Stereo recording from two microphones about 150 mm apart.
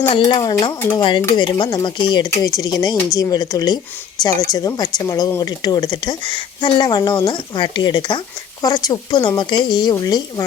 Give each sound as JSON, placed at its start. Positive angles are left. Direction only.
{"t": 0.3, "sound": "speech", "side_deg": 30}